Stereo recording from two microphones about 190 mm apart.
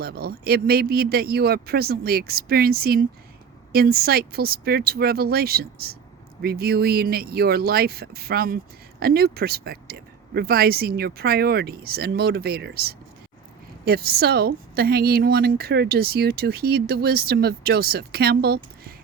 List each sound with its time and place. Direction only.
0.0 s a woman's voice: 55° right (ahead or behind)